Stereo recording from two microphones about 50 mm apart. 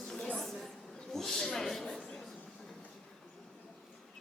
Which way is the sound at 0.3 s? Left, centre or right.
Centre.